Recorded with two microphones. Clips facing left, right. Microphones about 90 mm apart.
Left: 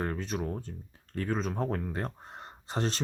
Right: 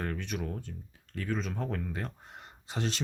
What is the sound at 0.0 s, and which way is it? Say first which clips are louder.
Speech: left 3 dB; 30° left (ahead or behind).